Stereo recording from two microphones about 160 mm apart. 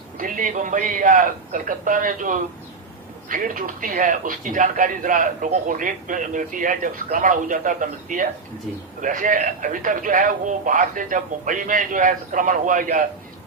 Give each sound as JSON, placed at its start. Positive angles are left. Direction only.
{"t": 0.2, "sound": "speech", "side_deg": -55}